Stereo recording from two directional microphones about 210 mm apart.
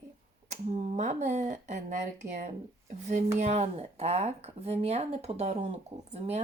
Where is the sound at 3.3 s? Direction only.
30° right (ahead or behind).